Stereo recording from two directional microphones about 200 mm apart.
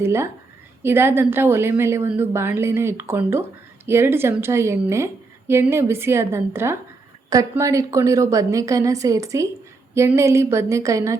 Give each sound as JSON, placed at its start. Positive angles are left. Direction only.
{"t": 0.0, "sound": "a woman's voice", "side_deg": -10}